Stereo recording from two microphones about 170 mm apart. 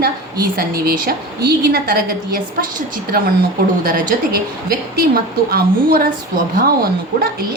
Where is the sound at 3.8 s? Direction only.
60° right (ahead or behind).